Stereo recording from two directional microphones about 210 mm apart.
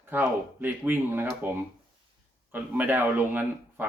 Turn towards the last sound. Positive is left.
turn(degrees=-10)  # may be behind; listen again after turning